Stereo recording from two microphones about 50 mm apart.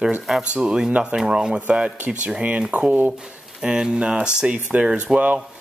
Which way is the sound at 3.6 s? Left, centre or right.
Centre.